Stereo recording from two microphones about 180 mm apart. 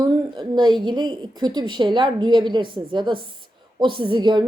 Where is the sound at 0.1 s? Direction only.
25° right (ahead or behind).